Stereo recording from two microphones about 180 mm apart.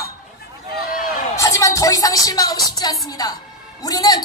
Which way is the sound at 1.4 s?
15° left (ahead or behind).